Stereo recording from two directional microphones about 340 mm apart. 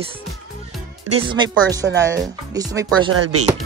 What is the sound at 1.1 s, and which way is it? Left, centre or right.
Speech, centre.